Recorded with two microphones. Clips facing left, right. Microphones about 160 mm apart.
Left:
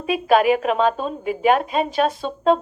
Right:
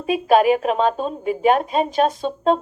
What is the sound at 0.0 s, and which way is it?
A woman's voice, 45° right (ahead or behind).